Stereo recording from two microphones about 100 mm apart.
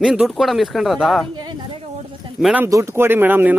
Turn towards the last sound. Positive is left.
turn(degrees=-20)  # may be behind; listen again after turning